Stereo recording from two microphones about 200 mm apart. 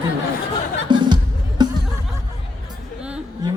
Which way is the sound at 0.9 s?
20° right (ahead or behind).